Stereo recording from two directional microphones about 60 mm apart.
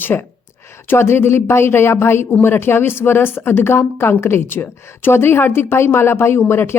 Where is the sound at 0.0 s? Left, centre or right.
Left.